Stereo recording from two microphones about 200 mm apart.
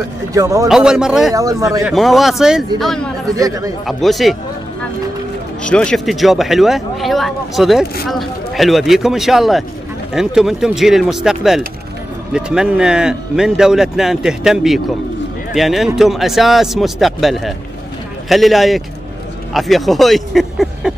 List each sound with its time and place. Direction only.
0.3 s speech: 15° right (ahead or behind)
0.7 s speech: 5° right (ahead or behind)
1.3 s speech: 15° right (ahead or behind)
1.8 s speech: centre (ahead or behind)
3.3 s speech: 15° right (ahead or behind)
3.8 s speech: centre (ahead or behind)
5.6 s speech: 5° left (ahead or behind)